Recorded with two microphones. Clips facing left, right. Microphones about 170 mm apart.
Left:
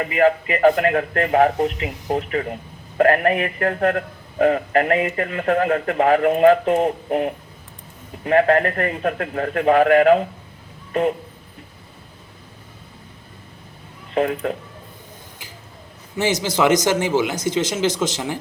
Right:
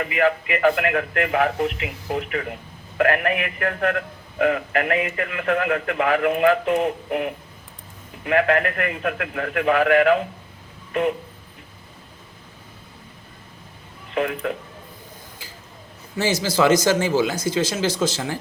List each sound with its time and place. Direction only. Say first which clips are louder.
0.0 s a man's voice: left 4 dB; 35° left (ahead or behind)
14.1 s speech: left 3 dB; 35° left (ahead or behind)
16.1 s speech: left 1 dB; 20° left (ahead or behind)